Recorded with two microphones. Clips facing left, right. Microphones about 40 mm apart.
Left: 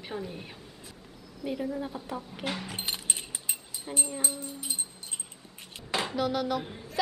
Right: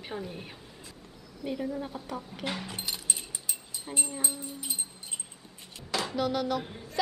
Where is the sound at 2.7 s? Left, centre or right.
Left.